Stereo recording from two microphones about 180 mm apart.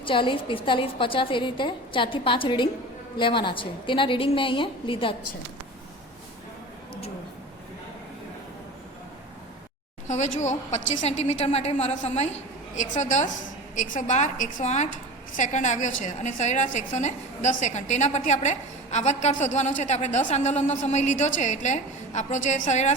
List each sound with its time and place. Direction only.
0.0 s a woman's voice: 30° left (ahead or behind)
10.1 s a woman's voice: 40° left (ahead or behind)